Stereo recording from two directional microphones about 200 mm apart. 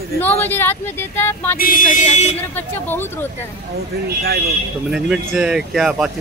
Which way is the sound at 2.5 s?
10° left (ahead or behind).